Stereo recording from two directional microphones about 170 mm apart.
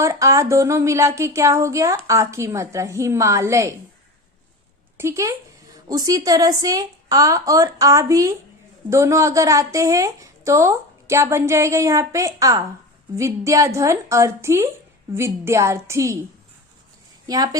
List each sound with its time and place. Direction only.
0.0 s a woman's voice: 20° right (ahead or behind)
4.9 s a woman's voice: 15° right (ahead or behind)
17.2 s a woman's voice: 20° right (ahead or behind)